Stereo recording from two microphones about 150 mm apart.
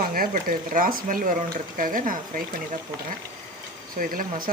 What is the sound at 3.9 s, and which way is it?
Speech, 70° right (ahead or behind).